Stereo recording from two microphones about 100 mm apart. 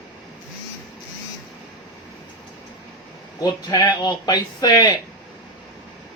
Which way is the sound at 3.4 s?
40° left (ahead or behind).